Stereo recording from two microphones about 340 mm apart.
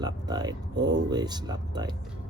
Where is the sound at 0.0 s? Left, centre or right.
Centre.